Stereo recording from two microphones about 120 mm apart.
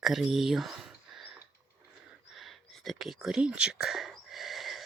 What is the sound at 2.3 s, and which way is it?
Whispering, centre (ahead or behind).